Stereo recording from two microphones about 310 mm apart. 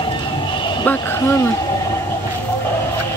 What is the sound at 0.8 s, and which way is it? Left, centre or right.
Speech, centre.